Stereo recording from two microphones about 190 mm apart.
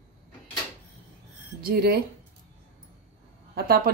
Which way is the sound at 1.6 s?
55° right (ahead or behind).